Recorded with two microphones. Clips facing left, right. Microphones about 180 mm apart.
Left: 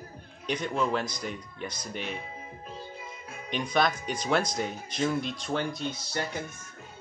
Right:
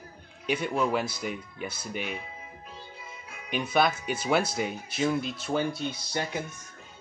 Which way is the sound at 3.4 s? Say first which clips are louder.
Right 1 dB; 5° right (ahead or behind).